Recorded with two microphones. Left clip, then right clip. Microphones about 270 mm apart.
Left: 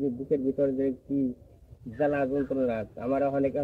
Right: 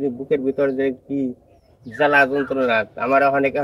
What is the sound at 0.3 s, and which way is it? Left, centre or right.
Speech, right.